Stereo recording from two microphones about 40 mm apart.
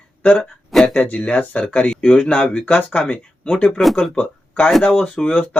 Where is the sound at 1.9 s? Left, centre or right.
Centre.